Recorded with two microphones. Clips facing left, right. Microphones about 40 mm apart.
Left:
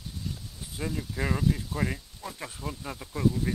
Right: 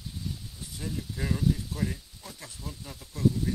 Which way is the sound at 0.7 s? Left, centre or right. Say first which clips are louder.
Left 4 dB; left.